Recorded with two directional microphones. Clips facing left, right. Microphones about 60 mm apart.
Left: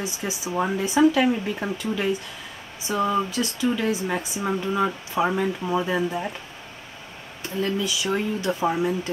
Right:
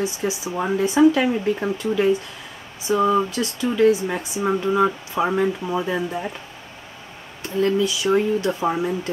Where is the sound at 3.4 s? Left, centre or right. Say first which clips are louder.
Right 5 dB; centre.